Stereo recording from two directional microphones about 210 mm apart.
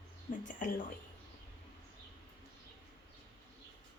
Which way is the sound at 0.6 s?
40° left (ahead or behind).